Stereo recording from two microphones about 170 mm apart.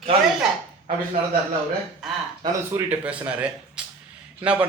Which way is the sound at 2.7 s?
10° right (ahead or behind).